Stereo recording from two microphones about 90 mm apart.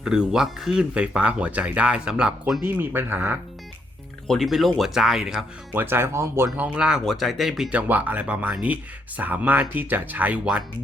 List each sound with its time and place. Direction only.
0.0 s speech: 10° right (ahead or behind)
2.6 s speech: 25° right (ahead or behind)
4.3 s speech: centre (ahead or behind)
5.7 s speech: 25° right (ahead or behind)
6.7 s speech: 10° right (ahead or behind)
7.7 s speech: 20° right (ahead or behind)